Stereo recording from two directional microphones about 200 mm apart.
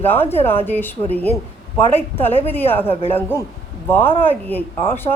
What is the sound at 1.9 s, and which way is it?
Speech, 10° left (ahead or behind).